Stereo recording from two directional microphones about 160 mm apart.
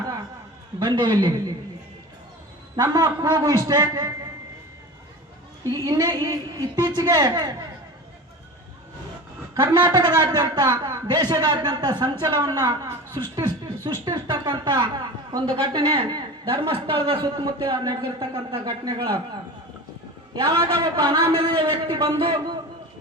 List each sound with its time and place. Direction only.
0.8 s a woman's voice: 30° right (ahead or behind)
2.8 s a woman's voice: 25° right (ahead or behind)
5.7 s a woman's voice: 25° right (ahead or behind)
9.6 s a woman's voice: 30° right (ahead or behind)
20.7 s a man's voice: 30° right (ahead or behind)